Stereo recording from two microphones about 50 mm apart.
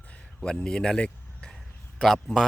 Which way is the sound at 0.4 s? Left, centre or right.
Centre.